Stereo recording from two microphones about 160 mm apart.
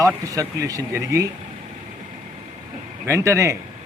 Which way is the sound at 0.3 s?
20° right (ahead or behind).